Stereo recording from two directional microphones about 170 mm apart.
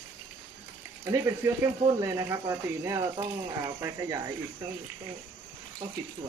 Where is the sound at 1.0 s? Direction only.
20° right (ahead or behind).